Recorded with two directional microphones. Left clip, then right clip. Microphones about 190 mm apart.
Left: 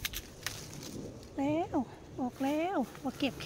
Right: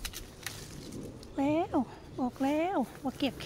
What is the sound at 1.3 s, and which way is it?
Speech, 25° right (ahead or behind).